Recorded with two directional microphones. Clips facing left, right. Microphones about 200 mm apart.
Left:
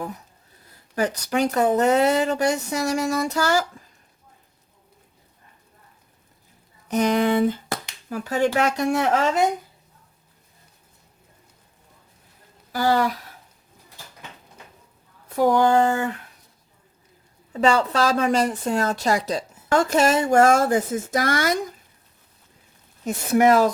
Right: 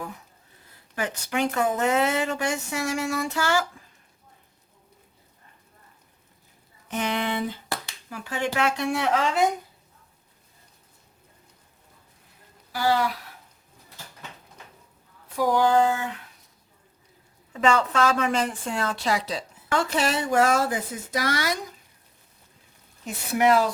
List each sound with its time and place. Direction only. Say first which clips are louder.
0.9 s a woman's voice: left 5 dB; 40° left (ahead or behind)
6.8 s a woman's voice: left 8 dB; 40° left (ahead or behind)
12.7 s a woman's voice: left 3 dB; 45° left (ahead or behind)
15.4 s a woman's voice: left 3 dB; 50° left (ahead or behind)
17.5 s a woman's voice: left 3 dB; 35° left (ahead or behind)
23.0 s a woman's voice: left 4 dB; 45° left (ahead or behind)